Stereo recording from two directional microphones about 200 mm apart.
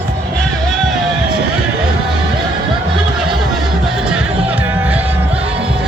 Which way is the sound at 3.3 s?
Centre (ahead or behind).